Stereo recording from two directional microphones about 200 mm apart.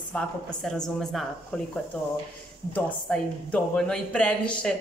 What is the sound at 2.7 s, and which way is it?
Speech, 5° left (ahead or behind).